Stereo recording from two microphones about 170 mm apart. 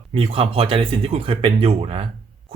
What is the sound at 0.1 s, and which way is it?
Speech, 35° right (ahead or behind).